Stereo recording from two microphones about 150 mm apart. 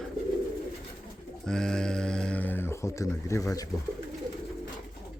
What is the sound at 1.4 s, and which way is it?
Speech, 5° left (ahead or behind).